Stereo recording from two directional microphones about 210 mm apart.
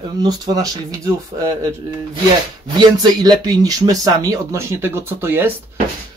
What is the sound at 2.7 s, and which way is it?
Speech, 20° right (ahead or behind).